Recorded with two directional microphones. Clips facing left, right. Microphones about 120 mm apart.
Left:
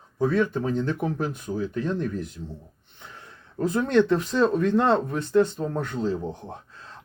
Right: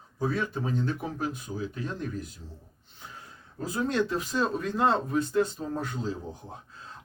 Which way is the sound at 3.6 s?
55° left (ahead or behind).